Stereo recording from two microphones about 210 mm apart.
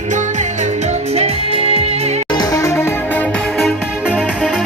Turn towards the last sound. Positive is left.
turn(degrees=-5)  # may be behind; listen again after turning